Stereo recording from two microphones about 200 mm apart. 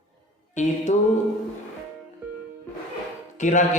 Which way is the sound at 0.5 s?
40° left (ahead or behind).